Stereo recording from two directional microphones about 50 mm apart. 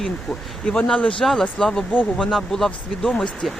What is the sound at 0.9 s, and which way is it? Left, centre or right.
Speech, left.